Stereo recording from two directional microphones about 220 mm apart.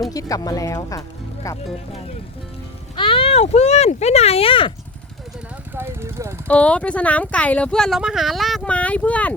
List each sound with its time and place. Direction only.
0.1 s speech: 15° left (ahead or behind)
2.9 s speech: 25° left (ahead or behind)
5.7 s a sound: 10° right (ahead or behind)
6.5 s speech: 5° left (ahead or behind)